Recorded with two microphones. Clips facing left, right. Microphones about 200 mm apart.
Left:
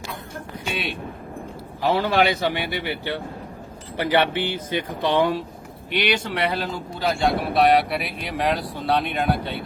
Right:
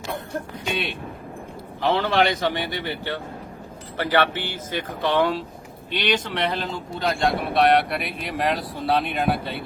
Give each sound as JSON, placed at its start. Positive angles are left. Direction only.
{"t": 1.8, "sound": "speech", "side_deg": 10}